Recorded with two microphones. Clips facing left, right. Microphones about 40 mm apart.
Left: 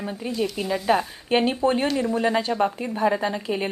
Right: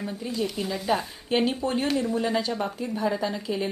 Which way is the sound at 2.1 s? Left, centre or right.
Left.